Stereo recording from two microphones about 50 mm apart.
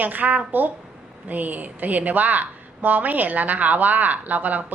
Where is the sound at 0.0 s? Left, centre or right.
Right.